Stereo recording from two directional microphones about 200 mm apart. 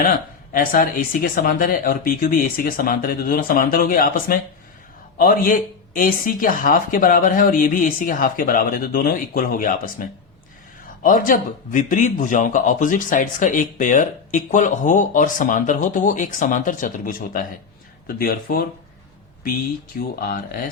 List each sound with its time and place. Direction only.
0.5 s speech: 45° left (ahead or behind)
11.0 s a man's voice: 40° left (ahead or behind)
20.2 s speech: 45° left (ahead or behind)